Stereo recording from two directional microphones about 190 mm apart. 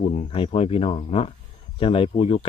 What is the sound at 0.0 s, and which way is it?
Speech, 40° left (ahead or behind).